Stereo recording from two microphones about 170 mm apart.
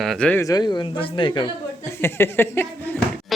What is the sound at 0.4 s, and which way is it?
Speech, 25° left (ahead or behind).